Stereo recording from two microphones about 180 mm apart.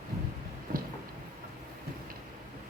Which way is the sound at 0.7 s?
50° right (ahead or behind).